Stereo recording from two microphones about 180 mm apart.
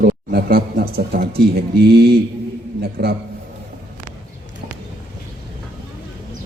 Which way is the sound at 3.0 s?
65° right (ahead or behind).